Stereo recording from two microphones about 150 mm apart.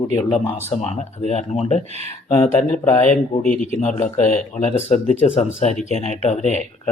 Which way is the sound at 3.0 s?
55° left (ahead or behind).